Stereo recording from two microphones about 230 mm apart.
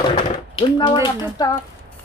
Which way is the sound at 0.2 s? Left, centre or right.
Left.